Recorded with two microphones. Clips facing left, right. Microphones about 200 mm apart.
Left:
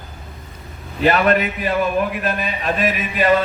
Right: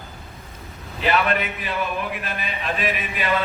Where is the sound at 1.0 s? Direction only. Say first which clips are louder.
Left 6 dB; 45° left (ahead or behind).